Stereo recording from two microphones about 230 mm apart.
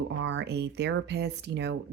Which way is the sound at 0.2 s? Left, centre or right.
Right.